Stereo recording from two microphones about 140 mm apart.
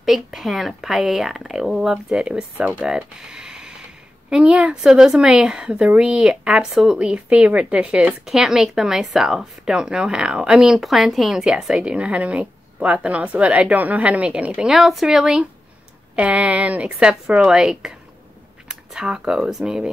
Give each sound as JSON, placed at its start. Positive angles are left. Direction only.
{"t": 0.0, "sound": "a woman's voice", "side_deg": 0}
{"t": 3.2, "sound": "a sound", "side_deg": -5}
{"t": 4.3, "sound": "a woman's voice", "side_deg": -10}